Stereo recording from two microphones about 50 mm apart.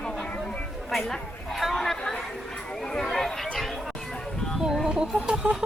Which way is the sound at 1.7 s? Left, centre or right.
Centre.